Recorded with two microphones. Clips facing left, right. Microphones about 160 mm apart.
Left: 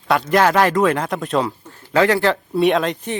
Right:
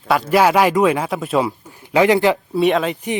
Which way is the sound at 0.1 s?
5° right (ahead or behind).